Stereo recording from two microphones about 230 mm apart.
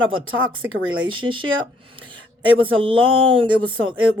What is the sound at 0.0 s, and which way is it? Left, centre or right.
Speech, right.